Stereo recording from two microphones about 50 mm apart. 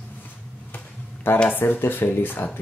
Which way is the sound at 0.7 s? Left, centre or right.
Left.